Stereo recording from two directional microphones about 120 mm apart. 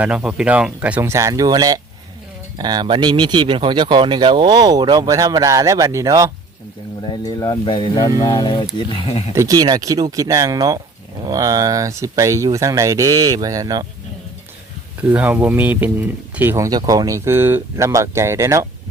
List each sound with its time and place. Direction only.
0.0 s speech: 10° right (ahead or behind)
1.1 s speech: 30° right (ahead or behind)
7.2 s speech: 30° left (ahead or behind)
8.9 s speech: 50° left (ahead or behind)
9.3 s speech: 25° right (ahead or behind)
15.1 s speech: 15° right (ahead or behind)
16.6 s speech: 30° right (ahead or behind)